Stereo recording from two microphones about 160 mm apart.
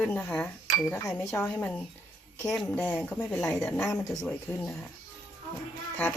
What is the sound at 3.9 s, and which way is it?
Speech, 20° left (ahead or behind).